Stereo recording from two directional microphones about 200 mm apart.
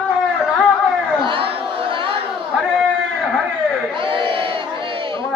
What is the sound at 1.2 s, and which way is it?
Chatter, 25° right (ahead or behind).